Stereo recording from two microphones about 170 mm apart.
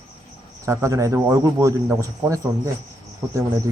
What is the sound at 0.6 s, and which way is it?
A man's voice, 15° right (ahead or behind).